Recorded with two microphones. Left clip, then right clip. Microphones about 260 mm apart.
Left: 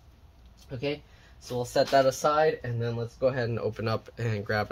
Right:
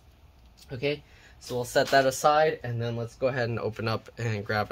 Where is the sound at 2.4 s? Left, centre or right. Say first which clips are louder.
Right 1 dB; centre.